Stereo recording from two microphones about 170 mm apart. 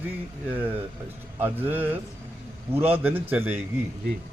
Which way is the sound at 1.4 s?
10° right (ahead or behind).